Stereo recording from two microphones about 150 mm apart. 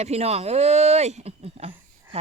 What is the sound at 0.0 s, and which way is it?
Speech, 45° right (ahead or behind).